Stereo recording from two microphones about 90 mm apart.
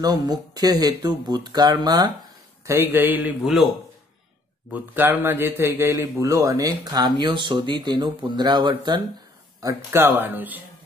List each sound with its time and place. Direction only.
0.0 s speech: 45° right (ahead or behind)
2.6 s a man's voice: 25° right (ahead or behind)
4.7 s a man's voice: 20° right (ahead or behind)
5.9 s speech: 35° right (ahead or behind)
7.2 s speech: 65° right (ahead or behind)
9.8 s a man's voice: 25° right (ahead or behind)